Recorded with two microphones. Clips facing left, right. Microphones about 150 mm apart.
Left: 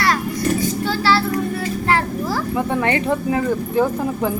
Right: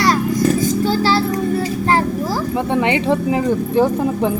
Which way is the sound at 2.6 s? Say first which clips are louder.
Right 2 dB; 25° right (ahead or behind).